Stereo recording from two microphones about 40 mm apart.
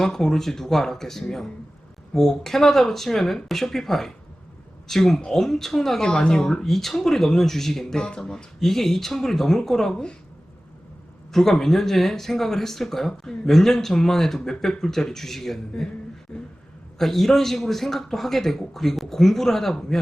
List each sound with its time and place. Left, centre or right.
0.0 s speech: centre
9.9 s a woman's voice: left
11.3 s speech: centre
17.0 s speech: centre